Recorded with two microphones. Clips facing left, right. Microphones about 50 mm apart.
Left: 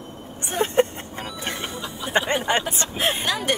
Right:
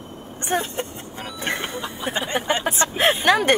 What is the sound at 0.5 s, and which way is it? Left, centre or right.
Speech, left.